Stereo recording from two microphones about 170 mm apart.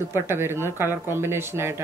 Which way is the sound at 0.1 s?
15° right (ahead or behind).